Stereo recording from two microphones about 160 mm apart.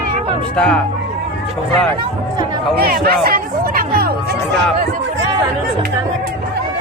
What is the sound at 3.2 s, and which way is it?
Music, 65° right (ahead or behind).